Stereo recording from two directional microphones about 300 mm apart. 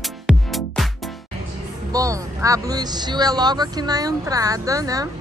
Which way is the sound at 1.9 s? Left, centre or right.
Centre.